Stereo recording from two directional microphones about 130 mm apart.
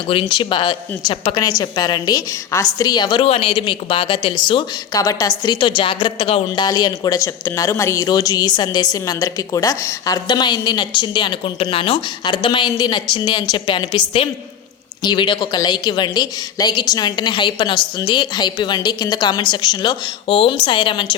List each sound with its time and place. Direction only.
0.1 s speech: 40° left (ahead or behind)
6.7 s speech: 30° left (ahead or behind)